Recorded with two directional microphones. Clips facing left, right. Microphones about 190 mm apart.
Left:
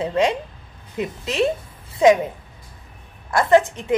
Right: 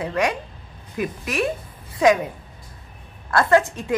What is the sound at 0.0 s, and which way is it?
A woman's voice, 25° left (ahead or behind).